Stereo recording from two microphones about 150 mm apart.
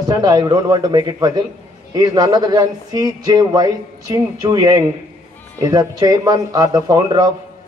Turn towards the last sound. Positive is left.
turn(degrees=-25)  # may be behind; listen again after turning